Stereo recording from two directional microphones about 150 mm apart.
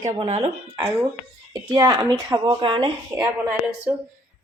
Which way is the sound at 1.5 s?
25° right (ahead or behind).